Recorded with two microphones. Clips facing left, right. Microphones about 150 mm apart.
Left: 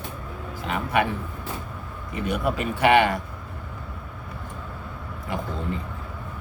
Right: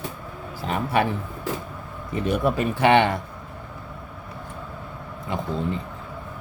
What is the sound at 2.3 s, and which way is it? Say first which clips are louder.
Speech: right 3 dB; 30° right (ahead or behind).